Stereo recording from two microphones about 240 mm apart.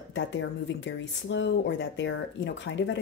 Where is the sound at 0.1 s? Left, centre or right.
Left.